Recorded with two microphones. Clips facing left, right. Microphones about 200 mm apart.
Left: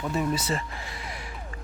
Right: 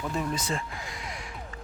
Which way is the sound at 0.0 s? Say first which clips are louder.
Left 3 dB; 5° left (ahead or behind).